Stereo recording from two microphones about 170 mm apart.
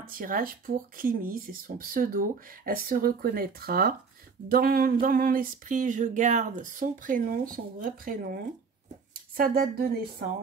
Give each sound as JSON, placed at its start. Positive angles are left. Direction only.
{"t": 0.0, "sound": "speech", "side_deg": -55}
{"t": 4.5, "sound": "a sound", "side_deg": -60}
{"t": 9.4, "sound": "speech", "side_deg": -60}